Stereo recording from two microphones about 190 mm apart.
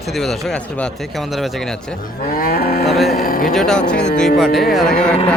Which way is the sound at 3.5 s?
Centre (ahead or behind).